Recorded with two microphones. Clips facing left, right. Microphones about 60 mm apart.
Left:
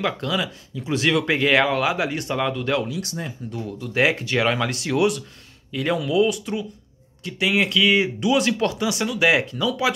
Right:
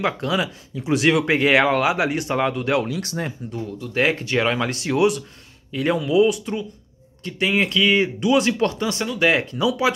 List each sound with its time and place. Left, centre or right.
0.0 s speech: centre
2.3 s speech: right
2.9 s speech: right
3.5 s speech: centre